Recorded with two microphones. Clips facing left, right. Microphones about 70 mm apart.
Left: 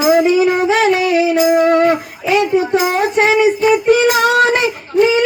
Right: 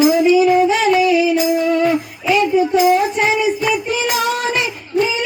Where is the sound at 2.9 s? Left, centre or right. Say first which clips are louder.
Left 1 dB; left.